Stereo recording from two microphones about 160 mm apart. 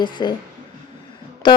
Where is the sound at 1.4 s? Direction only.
30° left (ahead or behind).